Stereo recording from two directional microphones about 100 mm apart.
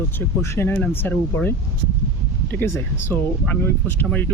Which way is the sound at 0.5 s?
25° left (ahead or behind).